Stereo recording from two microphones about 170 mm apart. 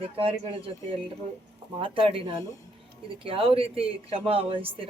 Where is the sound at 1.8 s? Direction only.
30° right (ahead or behind).